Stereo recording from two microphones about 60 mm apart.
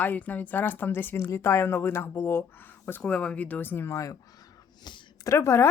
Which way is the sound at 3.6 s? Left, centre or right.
Left.